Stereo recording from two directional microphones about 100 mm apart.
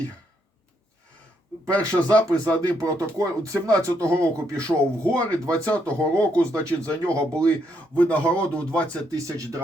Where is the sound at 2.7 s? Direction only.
35° right (ahead or behind).